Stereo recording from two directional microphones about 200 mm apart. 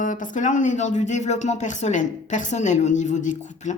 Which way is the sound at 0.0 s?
40° left (ahead or behind).